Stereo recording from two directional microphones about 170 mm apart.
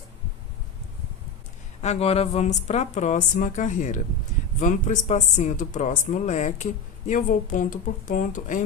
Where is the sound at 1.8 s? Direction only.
40° left (ahead or behind).